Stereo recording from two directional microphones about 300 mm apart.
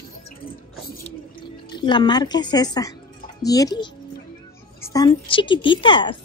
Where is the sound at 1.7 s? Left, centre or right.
Centre.